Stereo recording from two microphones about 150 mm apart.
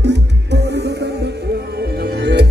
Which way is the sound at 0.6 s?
90° right.